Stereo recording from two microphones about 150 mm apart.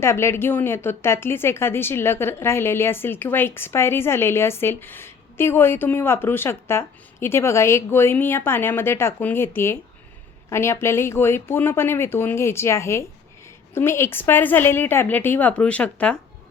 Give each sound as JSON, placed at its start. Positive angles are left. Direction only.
{"t": 0.0, "sound": "speech", "side_deg": 15}